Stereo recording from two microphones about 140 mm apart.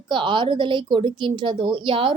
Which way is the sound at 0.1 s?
35° right (ahead or behind).